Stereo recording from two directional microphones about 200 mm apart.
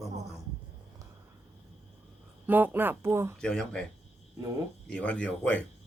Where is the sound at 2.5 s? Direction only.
10° right (ahead or behind).